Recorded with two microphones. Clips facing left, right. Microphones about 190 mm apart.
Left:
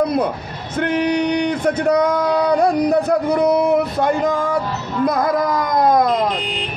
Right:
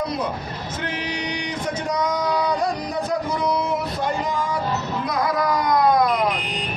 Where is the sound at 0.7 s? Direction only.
55° left (ahead or behind).